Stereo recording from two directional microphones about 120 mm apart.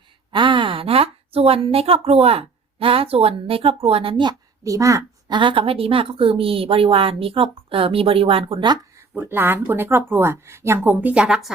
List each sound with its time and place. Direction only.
0.3 s speech: 45° right (ahead or behind)
4.6 s speech: 25° right (ahead or behind)
5.3 s a woman's voice: 40° right (ahead or behind)
9.0 s speech: 20° right (ahead or behind); by 11.5 s 5° right (ahead or behind)